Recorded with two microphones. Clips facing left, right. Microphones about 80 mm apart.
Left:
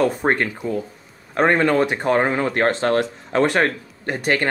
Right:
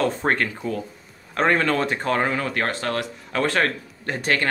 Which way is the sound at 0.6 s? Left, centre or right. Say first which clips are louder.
Left 3 dB; centre.